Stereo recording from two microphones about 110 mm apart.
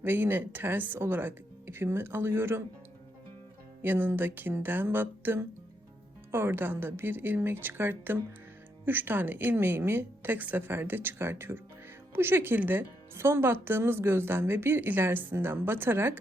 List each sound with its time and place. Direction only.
0.0 s speech: 20° right (ahead or behind)
3.8 s speech: 20° right (ahead or behind)